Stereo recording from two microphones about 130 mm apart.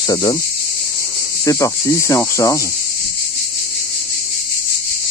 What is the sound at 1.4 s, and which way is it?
Speech, 25° left (ahead or behind).